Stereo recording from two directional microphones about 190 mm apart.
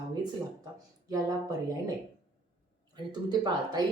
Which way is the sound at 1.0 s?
20° right (ahead or behind).